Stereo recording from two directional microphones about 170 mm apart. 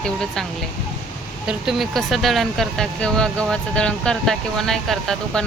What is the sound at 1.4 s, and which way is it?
Speech, centre (ahead or behind).